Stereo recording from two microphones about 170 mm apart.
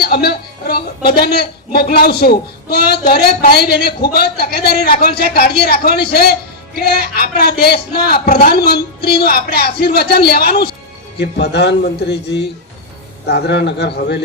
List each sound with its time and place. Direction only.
0.0 s a woman's voice: 65° left (ahead or behind)
11.2 s a man's voice: 80° left